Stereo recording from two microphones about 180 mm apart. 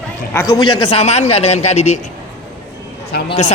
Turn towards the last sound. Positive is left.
turn(degrees=40)  # may be behind; listen again after turning